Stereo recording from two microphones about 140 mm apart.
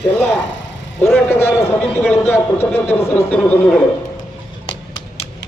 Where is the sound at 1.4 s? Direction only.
15° left (ahead or behind).